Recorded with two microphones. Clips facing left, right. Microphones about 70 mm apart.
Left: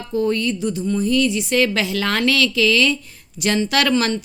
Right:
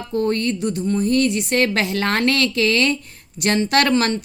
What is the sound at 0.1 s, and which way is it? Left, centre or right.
A woman's voice, right.